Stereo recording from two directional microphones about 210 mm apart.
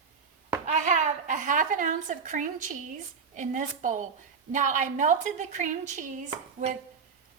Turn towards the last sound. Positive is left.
turn(degrees=-35)  # may be behind; listen again after turning